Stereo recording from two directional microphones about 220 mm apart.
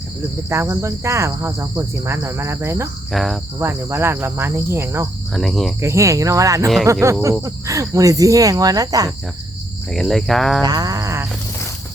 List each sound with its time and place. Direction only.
0.5 s cricket: 15° right (ahead or behind)
3.1 s speech: centre (ahead or behind)
3.6 s cricket: 10° right (ahead or behind)
5.3 s speech: centre (ahead or behind)
5.8 s cricket: 15° right (ahead or behind)
9.9 s speech: centre (ahead or behind)
10.6 s a sound: 20° right (ahead or behind)